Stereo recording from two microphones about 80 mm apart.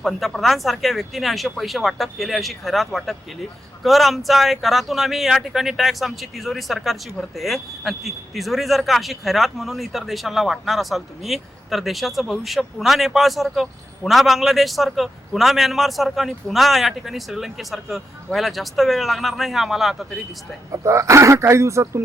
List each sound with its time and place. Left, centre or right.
0.0 s speech: centre
20.7 s speech: right